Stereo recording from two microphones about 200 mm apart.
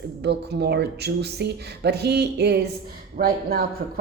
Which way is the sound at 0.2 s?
55° right (ahead or behind).